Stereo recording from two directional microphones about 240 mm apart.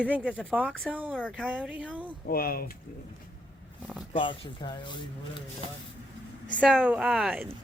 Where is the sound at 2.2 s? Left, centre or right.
Left.